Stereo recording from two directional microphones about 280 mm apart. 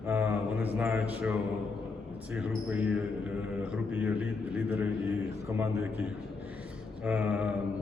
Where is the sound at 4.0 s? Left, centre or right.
Centre.